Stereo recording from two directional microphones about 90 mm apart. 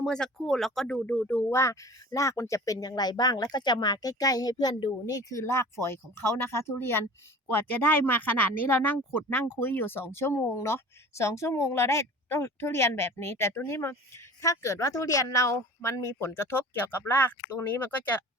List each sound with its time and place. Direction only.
0.0 s speech: 5° left (ahead or behind)
1.5 s a woman's voice: 35° left (ahead or behind)